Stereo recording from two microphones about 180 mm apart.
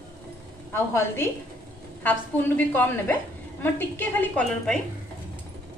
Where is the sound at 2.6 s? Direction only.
10° left (ahead or behind).